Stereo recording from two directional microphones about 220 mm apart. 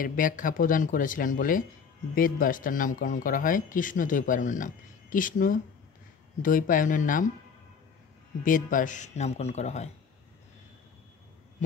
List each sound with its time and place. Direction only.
0.0 s speech: 40° left (ahead or behind)
8.5 s speech: 35° left (ahead or behind)